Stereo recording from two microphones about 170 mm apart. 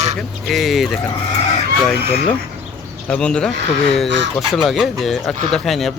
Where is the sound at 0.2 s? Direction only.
Centre (ahead or behind).